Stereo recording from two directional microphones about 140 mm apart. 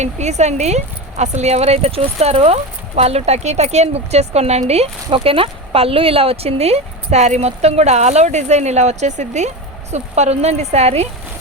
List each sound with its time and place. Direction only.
0.0 s a woman's voice: 55° right (ahead or behind)